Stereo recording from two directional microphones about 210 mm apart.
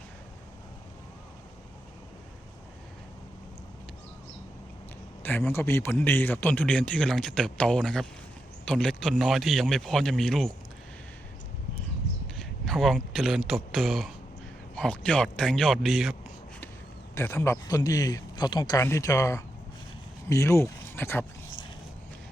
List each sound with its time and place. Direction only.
5.2 s a man's voice: 10° left (ahead or behind)
12.4 s speech: centre (ahead or behind)
17.2 s a man's voice: 10° left (ahead or behind)